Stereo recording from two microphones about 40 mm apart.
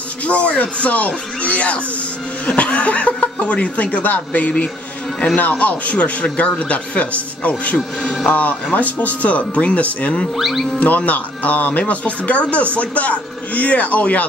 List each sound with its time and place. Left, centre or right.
0.2 s speech: left
10.3 s speech: centre
10.8 s speech: left